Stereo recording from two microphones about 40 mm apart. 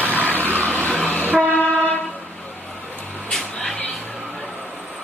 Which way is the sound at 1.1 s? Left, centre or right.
Left.